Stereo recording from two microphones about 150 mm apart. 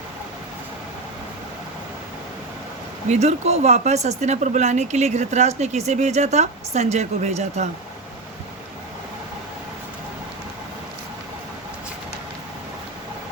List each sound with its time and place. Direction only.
3.1 s speech: 45° right (ahead or behind)